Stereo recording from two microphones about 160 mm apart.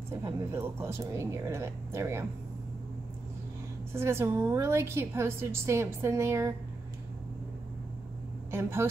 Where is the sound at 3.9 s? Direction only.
15° right (ahead or behind).